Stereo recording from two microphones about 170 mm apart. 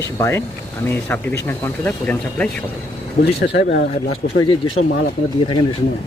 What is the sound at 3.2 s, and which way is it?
Speech, 85° left.